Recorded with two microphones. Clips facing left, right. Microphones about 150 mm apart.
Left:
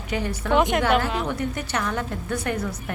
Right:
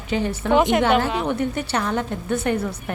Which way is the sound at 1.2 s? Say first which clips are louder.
Right 4 dB; 25° right (ahead or behind).